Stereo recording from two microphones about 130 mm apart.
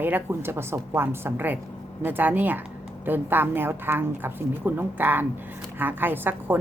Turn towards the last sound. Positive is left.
turn(degrees=-15)  # may be behind; listen again after turning